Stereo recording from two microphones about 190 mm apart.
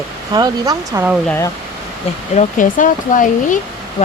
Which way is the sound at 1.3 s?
10° left (ahead or behind).